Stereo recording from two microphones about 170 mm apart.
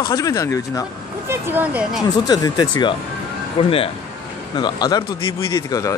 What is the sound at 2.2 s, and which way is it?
Speech, 25° left (ahead or behind).